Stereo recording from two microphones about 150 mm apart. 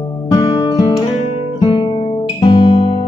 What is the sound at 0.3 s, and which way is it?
Music, 25° left (ahead or behind).